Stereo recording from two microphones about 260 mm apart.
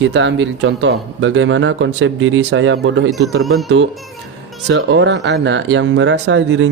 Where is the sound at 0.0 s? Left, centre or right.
Right.